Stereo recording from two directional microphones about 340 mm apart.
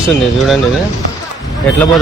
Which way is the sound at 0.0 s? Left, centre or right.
Centre.